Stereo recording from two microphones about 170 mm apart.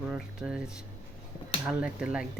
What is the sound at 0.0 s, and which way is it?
Speech, 5° right (ahead or behind).